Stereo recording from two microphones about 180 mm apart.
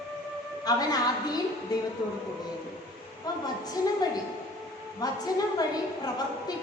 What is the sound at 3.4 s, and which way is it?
A woman's voice, 20° left (ahead or behind).